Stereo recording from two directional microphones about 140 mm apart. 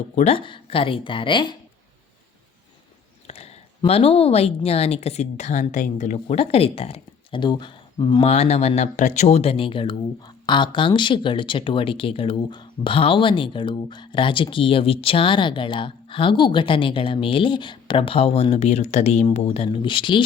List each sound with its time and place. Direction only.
0.2 s speech: 45° left (ahead or behind)
3.2 s a woman's voice: 45° left (ahead or behind)
8.2 s speech: 50° left (ahead or behind)